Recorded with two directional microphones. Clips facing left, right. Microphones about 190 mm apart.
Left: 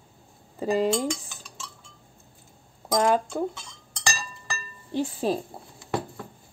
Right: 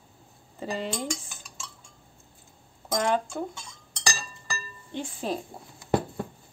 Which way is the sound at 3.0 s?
35° left (ahead or behind).